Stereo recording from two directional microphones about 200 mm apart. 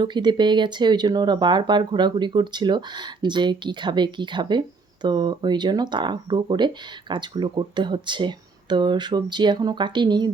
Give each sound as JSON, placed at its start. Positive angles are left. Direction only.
{"t": 0.0, "sound": "speech", "side_deg": -20}